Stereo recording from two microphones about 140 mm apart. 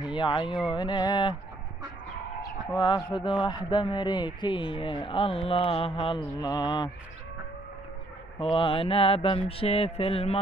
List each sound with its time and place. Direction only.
0.1 s a man's voice: 35° left (ahead or behind)
2.8 s a man's voice: 30° left (ahead or behind)
6.3 s mantra: 25° left (ahead or behind)
8.4 s mantra: 40° left (ahead or behind)